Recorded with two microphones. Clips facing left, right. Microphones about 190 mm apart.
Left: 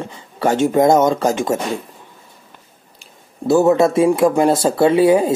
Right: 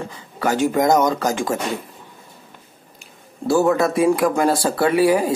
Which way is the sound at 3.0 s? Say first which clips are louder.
Left 2 dB; 20° left (ahead or behind).